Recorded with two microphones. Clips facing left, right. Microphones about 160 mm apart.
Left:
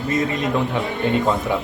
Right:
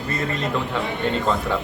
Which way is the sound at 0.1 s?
20° left (ahead or behind).